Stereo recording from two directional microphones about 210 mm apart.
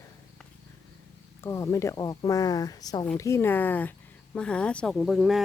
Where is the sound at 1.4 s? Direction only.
15° left (ahead or behind).